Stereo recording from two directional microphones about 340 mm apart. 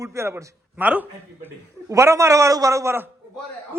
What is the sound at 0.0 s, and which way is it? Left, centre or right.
A woman's voice, centre.